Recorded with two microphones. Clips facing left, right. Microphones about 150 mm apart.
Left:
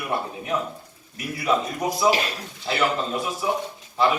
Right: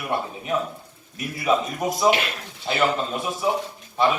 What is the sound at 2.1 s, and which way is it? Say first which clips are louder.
Speech: right 1 dB; 40° left (ahead or behind).